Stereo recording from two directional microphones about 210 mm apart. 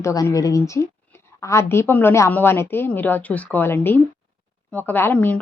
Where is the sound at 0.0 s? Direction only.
15° left (ahead or behind).